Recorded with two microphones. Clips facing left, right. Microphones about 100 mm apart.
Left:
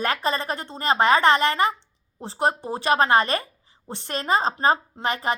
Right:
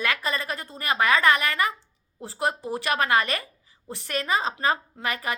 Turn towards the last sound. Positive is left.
turn(degrees=30)  # may be behind; listen again after turning